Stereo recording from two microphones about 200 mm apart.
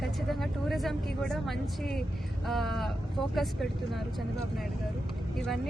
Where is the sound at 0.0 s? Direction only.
Centre (ahead or behind).